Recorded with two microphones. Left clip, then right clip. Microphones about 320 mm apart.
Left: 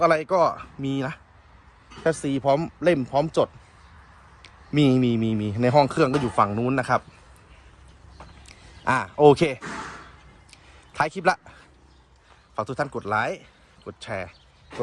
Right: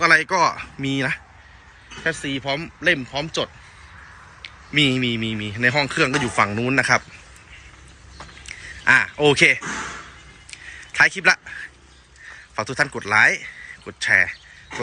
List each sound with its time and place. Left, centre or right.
0.0 s a man's voice: centre
2.0 s a man's voice: centre
8.4 s a man's voice: centre
10.5 s a sound: centre
12.5 s speech: centre